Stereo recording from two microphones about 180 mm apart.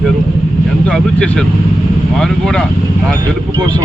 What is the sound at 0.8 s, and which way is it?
Speech, 5° left (ahead or behind).